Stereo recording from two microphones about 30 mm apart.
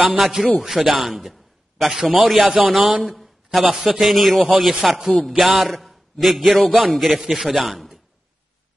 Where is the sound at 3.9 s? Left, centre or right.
Centre.